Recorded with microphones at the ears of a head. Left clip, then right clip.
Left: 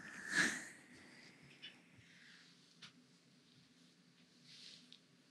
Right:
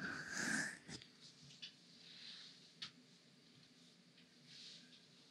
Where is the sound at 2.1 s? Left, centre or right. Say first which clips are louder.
Right 8 dB; right.